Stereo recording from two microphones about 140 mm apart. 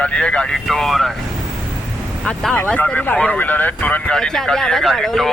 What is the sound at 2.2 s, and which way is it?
Speech, centre (ahead or behind).